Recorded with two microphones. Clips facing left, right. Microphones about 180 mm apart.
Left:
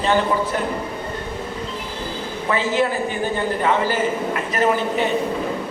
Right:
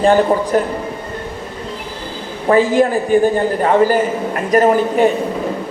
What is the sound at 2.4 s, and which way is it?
A man's voice, 45° right (ahead or behind).